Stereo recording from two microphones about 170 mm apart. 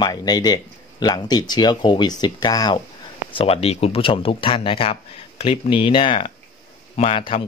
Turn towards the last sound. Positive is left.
turn(degrees=35)  # may be behind; listen again after turning